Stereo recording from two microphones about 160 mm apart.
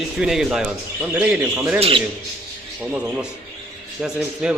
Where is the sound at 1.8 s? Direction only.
35° right (ahead or behind).